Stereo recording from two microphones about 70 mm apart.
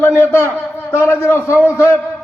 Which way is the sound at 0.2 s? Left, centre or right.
Left.